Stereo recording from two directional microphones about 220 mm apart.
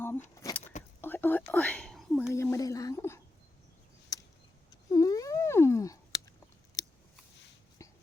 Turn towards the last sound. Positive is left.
turn(degrees=15)  # may be behind; listen again after turning